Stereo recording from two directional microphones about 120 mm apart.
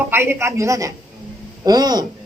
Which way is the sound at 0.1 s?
20° right (ahead or behind).